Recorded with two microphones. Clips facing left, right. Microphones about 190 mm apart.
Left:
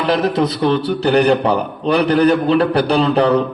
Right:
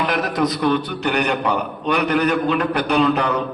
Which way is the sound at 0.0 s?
30° left (ahead or behind).